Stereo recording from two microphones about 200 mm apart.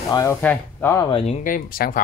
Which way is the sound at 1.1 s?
25° left (ahead or behind).